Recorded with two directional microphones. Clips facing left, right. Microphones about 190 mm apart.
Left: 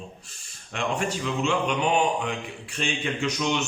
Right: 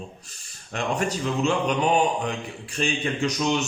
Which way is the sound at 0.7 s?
40° right (ahead or behind).